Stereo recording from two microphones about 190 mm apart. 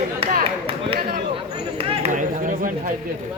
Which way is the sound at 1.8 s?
30° right (ahead or behind).